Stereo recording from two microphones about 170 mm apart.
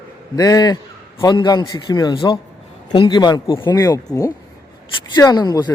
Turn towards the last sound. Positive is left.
turn(degrees=25)  # may be behind; listen again after turning